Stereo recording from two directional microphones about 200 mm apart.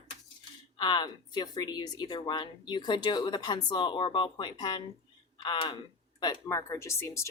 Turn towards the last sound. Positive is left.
turn(degrees=15)  # may be behind; listen again after turning